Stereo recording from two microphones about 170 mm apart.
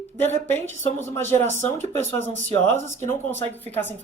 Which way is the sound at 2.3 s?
45° right (ahead or behind).